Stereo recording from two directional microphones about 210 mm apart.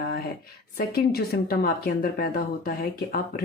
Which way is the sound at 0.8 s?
45° left (ahead or behind).